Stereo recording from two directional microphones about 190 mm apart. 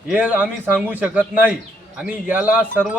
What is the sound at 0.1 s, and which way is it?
A man's voice, 10° right (ahead or behind).